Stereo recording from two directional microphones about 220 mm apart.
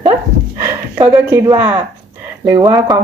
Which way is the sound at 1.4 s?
15° right (ahead or behind).